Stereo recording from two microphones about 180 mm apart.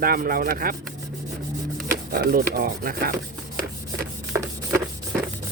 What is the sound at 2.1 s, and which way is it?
Speech, 55° right (ahead or behind).